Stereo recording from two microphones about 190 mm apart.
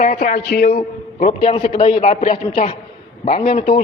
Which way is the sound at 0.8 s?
30° left (ahead or behind).